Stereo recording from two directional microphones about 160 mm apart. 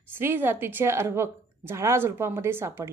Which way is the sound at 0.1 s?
15° right (ahead or behind).